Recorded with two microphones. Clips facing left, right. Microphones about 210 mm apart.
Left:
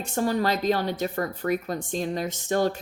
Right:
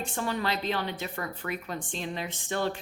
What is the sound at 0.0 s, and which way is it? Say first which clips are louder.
Speech: left 6 dB; 40° left (ahead or behind).